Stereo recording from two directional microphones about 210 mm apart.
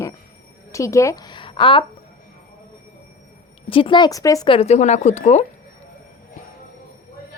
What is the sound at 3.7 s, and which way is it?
Speech, 25° left (ahead or behind).